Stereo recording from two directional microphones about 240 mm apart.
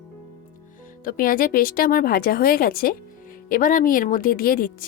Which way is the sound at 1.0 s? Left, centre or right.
Left.